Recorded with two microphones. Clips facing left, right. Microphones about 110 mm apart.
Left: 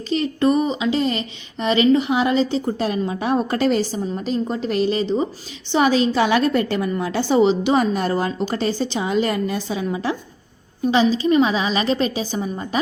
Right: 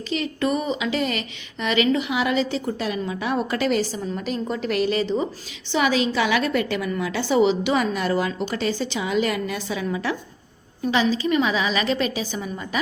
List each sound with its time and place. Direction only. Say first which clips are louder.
0.1 s a woman's voice: left 6 dB; 35° left (ahead or behind)
5.7 s a woman's voice: left 4 dB; 35° left (ahead or behind)